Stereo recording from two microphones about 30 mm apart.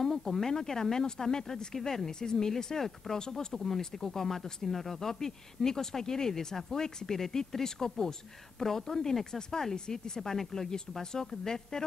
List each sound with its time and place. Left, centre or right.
0.0 s speech: centre